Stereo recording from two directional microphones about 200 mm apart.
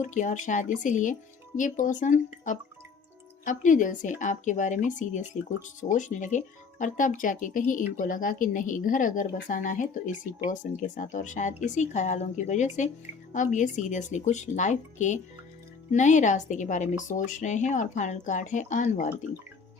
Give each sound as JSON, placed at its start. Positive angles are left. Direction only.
{"t": 0.0, "sound": "speech", "side_deg": 40}